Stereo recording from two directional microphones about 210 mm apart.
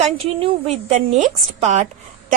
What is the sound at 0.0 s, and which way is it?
A woman's voice, 25° right (ahead or behind).